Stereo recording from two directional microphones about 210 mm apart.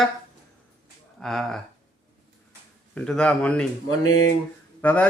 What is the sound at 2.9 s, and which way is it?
Speech, 5° left (ahead or behind).